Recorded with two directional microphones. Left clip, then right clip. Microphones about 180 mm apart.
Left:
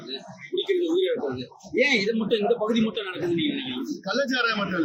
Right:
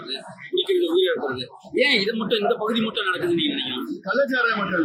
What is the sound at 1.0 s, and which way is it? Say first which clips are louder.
A man's voice: right 3 dB; 45° left (ahead or behind).